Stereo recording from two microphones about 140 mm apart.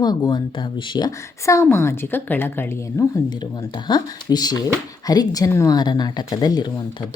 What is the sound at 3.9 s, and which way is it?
A woman's voice, 30° left (ahead or behind).